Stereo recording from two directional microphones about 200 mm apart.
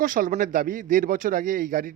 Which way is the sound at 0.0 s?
45° right (ahead or behind).